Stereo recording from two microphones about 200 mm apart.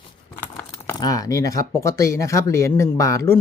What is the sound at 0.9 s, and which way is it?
Speech, 20° left (ahead or behind).